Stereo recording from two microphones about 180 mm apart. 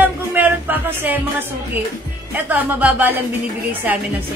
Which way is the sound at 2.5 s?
10° right (ahead or behind).